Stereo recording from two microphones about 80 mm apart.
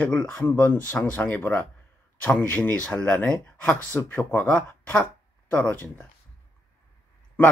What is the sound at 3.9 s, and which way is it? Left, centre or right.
Speech, left.